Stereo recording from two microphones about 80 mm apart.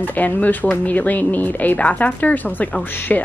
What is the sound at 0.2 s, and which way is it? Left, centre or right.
Speech, left.